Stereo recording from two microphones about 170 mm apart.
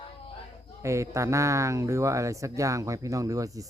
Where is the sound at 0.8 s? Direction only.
15° right (ahead or behind).